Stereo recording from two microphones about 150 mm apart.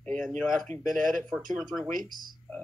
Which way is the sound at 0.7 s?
60° right (ahead or behind).